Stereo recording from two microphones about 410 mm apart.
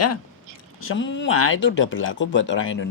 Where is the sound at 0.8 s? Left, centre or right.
Left.